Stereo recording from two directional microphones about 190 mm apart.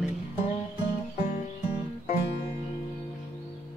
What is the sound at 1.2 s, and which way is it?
Music, 35° left (ahead or behind).